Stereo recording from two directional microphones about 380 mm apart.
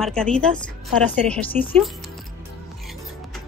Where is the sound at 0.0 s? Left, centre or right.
Centre.